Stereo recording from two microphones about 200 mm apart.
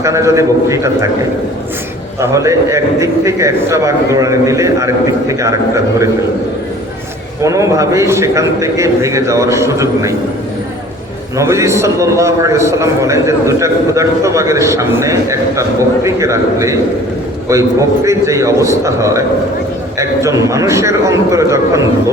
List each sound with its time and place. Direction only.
0.0 s a man's voice: 15° right (ahead or behind)
2.2 s a man's voice: 15° right (ahead or behind)
7.4 s a man's voice: 15° right (ahead or behind)
11.3 s a man's voice: 15° right (ahead or behind)